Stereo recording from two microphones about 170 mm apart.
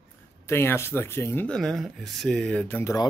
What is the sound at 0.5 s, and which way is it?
Speech, 15° left (ahead or behind).